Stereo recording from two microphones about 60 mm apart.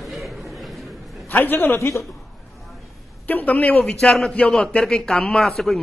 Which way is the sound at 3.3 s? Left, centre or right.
Left.